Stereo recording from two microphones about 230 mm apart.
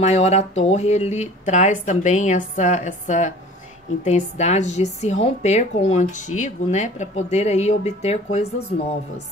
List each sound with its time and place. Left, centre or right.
0.0 s a woman's voice: left